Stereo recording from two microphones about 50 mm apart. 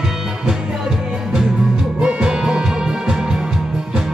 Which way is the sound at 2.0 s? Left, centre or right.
Centre.